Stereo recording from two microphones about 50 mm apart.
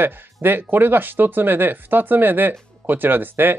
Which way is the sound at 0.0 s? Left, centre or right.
Right.